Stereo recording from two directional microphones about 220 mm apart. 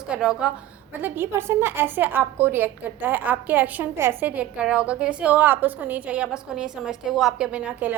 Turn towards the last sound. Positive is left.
turn(degrees=-5)  # may be behind; listen again after turning